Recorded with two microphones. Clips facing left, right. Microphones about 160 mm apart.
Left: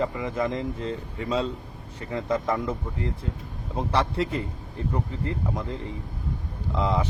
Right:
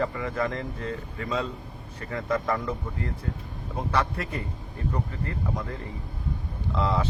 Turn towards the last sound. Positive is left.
turn(degrees=20)  # may be behind; listen again after turning